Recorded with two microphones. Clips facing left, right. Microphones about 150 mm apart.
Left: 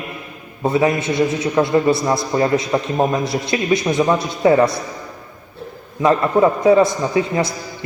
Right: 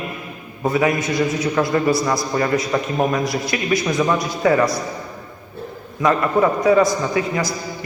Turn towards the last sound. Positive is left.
turn(degrees=25)  # may be behind; listen again after turning